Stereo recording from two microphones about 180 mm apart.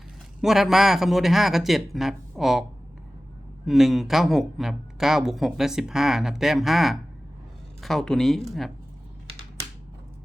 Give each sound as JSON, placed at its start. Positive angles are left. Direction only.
{"t": 0.4, "sound": "speech", "side_deg": 0}
{"t": 3.7, "sound": "speech", "side_deg": 0}